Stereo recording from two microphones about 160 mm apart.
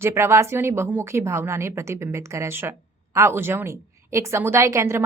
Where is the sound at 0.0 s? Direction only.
15° right (ahead or behind).